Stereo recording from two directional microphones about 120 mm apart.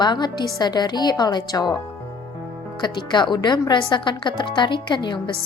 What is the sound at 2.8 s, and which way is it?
A woman's voice, 40° left (ahead or behind).